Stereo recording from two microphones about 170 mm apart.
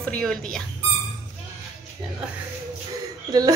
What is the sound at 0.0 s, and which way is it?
Speech, 5° left (ahead or behind).